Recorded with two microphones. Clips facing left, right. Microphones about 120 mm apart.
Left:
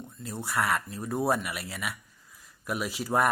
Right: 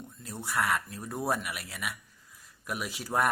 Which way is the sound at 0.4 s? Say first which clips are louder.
Left 1 dB; centre (ahead or behind).